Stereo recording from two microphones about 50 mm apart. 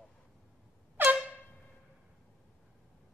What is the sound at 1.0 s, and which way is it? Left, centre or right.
Air horn, right.